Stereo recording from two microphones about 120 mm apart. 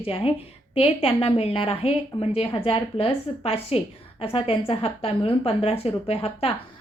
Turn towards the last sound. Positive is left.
turn(degrees=55)  # may be behind; listen again after turning